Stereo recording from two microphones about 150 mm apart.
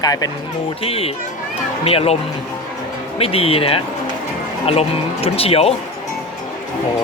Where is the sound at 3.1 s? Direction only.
40° left (ahead or behind).